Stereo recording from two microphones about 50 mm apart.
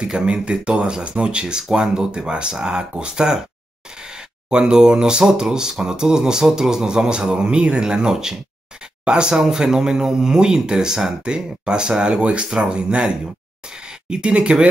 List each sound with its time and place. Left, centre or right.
0.0 s speech: centre
4.5 s speech: centre